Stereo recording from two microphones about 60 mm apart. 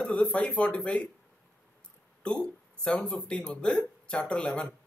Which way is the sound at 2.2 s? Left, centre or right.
Centre.